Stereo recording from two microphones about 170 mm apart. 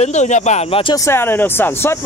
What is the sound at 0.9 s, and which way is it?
Speech, 15° left (ahead or behind).